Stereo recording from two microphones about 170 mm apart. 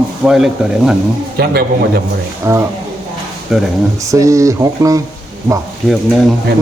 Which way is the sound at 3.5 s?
Centre (ahead or behind).